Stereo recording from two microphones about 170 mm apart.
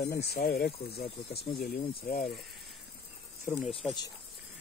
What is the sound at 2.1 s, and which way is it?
Speech, 60° left (ahead or behind).